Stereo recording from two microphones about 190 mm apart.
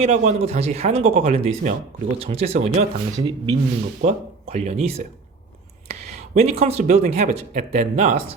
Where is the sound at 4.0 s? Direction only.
35° right (ahead or behind).